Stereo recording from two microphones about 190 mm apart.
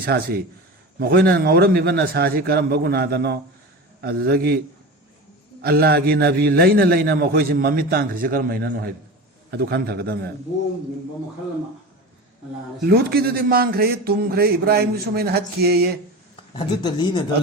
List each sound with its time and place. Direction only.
0.0 s a man's voice: 55° right (ahead or behind)
5.6 s a man's voice: 55° right (ahead or behind)
12.8 s a man's voice: 55° right (ahead or behind)
16.6 s speech: 25° left (ahead or behind)